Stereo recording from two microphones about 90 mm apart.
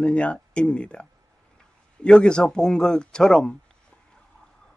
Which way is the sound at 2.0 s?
10° left (ahead or behind).